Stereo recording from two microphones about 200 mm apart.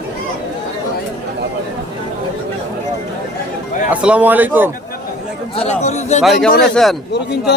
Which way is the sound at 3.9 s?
5° right (ahead or behind).